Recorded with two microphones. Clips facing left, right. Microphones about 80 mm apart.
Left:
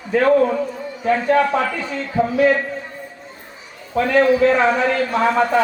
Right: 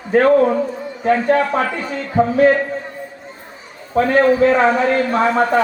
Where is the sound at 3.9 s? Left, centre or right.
Right.